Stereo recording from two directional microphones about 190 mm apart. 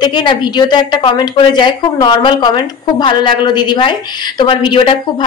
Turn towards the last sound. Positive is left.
turn(degrees=25)  # may be behind; listen again after turning